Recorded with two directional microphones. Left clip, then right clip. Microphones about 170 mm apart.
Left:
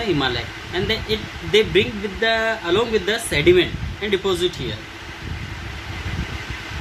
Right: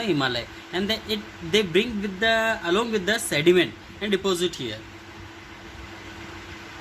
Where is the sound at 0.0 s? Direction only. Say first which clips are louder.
Left 3 dB; 45° right (ahead or behind).